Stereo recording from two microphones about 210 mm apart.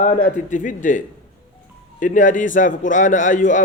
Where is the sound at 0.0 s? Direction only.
35° left (ahead or behind).